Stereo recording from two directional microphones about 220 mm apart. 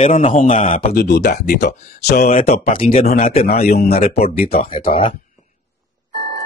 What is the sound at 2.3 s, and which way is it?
Speech, 25° left (ahead or behind).